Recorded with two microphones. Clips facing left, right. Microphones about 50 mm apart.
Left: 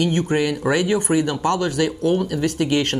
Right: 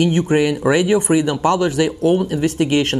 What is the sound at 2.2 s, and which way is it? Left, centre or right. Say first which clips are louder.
Speech: right 3 dB; right.